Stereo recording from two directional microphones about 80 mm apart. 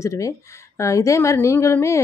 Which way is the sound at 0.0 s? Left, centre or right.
Left.